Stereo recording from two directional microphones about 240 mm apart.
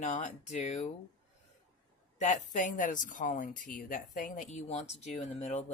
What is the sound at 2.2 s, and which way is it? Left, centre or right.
Speech, left.